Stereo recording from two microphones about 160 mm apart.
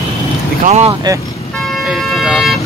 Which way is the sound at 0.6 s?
45° right (ahead or behind).